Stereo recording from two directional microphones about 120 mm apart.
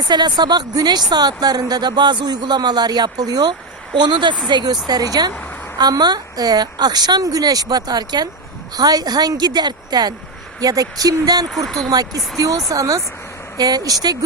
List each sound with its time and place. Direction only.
0.1 s speech: 35° right (ahead or behind)
5.3 s a sound: 15° left (ahead or behind)
5.7 s speech: 35° right (ahead or behind)
11.5 s speech: centre (ahead or behind)
11.9 s speech: 30° right (ahead or behind)